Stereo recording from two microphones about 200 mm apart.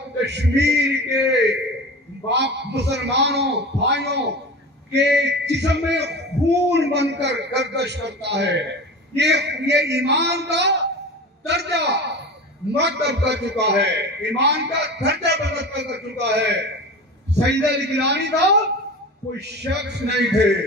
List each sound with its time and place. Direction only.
0.2 s a man's voice: 60° right (ahead or behind)